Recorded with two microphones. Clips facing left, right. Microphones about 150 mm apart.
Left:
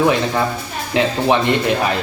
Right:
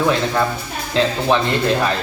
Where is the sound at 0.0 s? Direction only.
20° left (ahead or behind).